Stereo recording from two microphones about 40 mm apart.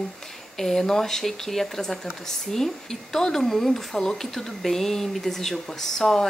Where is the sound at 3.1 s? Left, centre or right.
Centre.